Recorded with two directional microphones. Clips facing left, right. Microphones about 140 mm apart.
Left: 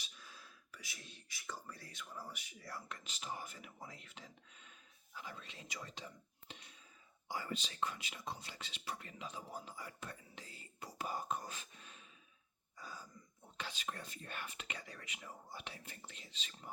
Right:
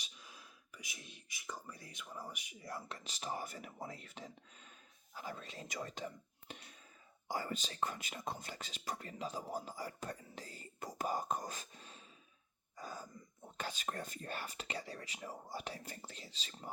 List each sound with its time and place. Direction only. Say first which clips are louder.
0.0 s speech: right 1 dB; 15° right (ahead or behind)
3.0 s speech: right 4 dB; 40° right (ahead or behind)
6.5 s whispering: right 4 dB; 50° right (ahead or behind)
7.3 s speech: right 3 dB; 40° right (ahead or behind)
12.7 s a sound: right 5 dB; 45° right (ahead or behind)
13.6 s speech: right 4 dB; 45° right (ahead or behind)